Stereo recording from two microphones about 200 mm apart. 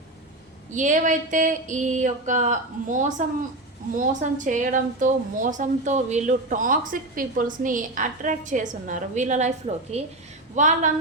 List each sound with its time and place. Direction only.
0.7 s speech: 40° right (ahead or behind)